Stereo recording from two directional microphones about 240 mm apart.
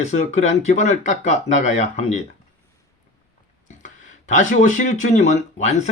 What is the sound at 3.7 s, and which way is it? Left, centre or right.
Speech, left.